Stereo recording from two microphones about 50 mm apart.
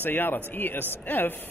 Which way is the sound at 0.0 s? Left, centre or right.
Left.